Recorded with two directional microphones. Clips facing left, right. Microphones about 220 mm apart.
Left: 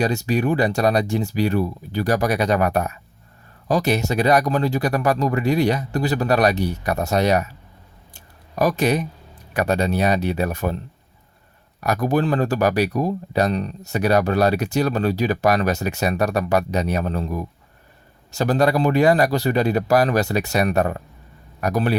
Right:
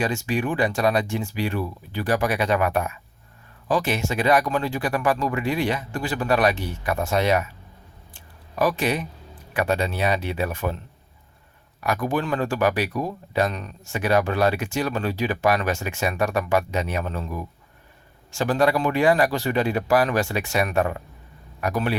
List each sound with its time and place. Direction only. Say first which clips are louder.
0.0 s speech: left 4 dB; 40° left (ahead or behind)
8.1 s a sound: left 3 dB; 40° left (ahead or behind)
9.5 s speech: left 3 dB; 40° left (ahead or behind)
11.8 s speech: left 4 dB; 40° left (ahead or behind)